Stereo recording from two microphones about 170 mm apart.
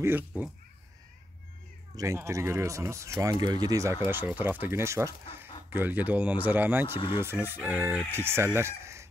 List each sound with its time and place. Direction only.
0.0 s speech: 10° right (ahead or behind)
2.0 s speech: 15° right (ahead or behind)
8.5 s chicken: 15° right (ahead or behind)